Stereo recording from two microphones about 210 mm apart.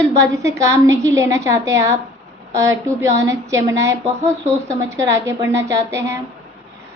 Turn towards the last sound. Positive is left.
turn(degrees=-15)  # may be behind; listen again after turning